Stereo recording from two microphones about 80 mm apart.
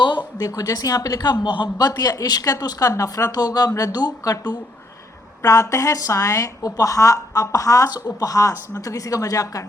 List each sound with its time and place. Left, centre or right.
0.3 s speech: left
3.3 s speech: left
5.4 s speech: left